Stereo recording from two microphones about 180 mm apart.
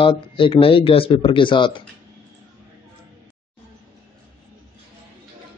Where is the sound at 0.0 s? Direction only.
30° left (ahead or behind).